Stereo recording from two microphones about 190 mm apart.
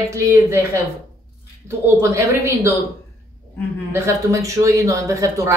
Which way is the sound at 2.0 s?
15° right (ahead or behind).